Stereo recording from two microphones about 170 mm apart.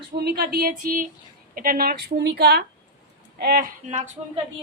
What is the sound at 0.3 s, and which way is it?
Speech, 60° right (ahead or behind).